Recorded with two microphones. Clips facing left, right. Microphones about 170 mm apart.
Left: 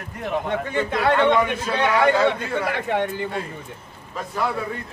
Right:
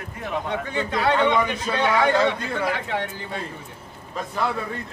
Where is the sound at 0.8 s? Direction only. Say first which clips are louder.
Left 1 dB; 60° left (ahead or behind).